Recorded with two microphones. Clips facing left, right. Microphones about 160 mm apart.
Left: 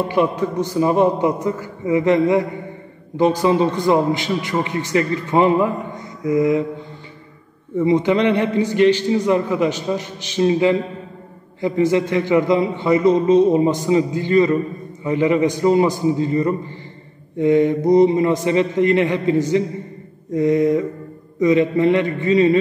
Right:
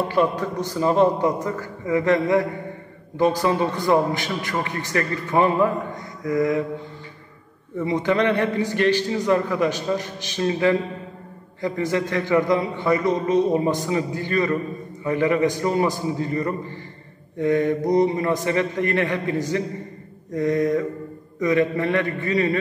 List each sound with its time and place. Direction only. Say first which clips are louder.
0.1 s a man's voice: left 3 dB; 15° left (ahead or behind)
7.8 s a man's voice: left 5 dB; 20° left (ahead or behind)